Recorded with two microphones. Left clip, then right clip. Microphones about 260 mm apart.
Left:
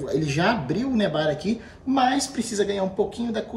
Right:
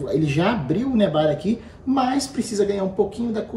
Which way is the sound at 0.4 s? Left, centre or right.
Centre.